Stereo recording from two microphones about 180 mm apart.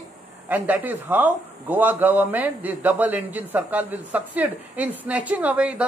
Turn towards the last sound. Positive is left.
turn(degrees=-5)  # may be behind; listen again after turning